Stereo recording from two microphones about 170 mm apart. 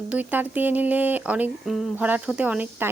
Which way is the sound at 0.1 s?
10° right (ahead or behind).